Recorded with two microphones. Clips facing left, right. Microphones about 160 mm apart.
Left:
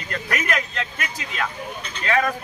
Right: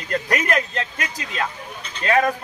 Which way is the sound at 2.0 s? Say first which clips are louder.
Right 3 dB; 35° right (ahead or behind).